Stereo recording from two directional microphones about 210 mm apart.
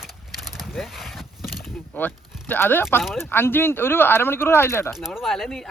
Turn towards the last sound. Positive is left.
turn(degrees=0)  # may be behind; listen again after turning